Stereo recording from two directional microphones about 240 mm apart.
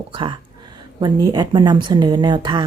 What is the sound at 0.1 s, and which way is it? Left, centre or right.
A woman's voice, right.